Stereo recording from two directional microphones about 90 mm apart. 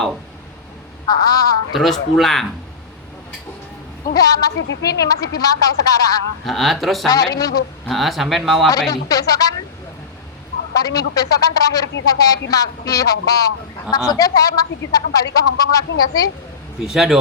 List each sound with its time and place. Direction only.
1.0 s speech: 45° left (ahead or behind)
1.7 s speech: centre (ahead or behind)
4.0 s speech: 45° left (ahead or behind)
6.4 s speech: 5° left (ahead or behind)
7.1 s speech: 40° left (ahead or behind)
7.9 s speech: centre (ahead or behind)
8.9 s speech: 40° left (ahead or behind)
10.8 s speech: 40° left (ahead or behind)
16.8 s speech: 5° right (ahead or behind)